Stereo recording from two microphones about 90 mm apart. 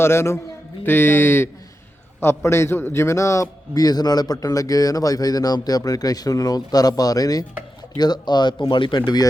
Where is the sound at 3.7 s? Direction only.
45° left (ahead or behind).